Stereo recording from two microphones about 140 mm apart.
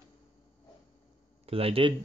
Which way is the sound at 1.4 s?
45° right (ahead or behind).